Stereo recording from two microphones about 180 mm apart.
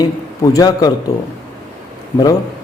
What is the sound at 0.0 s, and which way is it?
Speech, 20° left (ahead or behind).